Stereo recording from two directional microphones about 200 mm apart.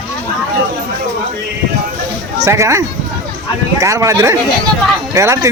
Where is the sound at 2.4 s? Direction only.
15° right (ahead or behind).